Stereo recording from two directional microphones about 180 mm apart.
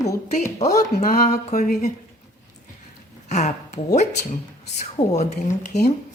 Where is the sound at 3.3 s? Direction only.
40° left (ahead or behind).